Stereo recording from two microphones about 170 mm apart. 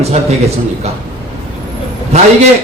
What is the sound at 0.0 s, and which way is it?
Speech, 40° right (ahead or behind).